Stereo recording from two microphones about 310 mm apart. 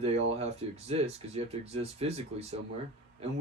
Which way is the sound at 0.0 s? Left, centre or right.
Centre.